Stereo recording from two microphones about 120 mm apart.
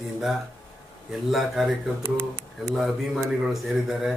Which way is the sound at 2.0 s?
20° right (ahead or behind).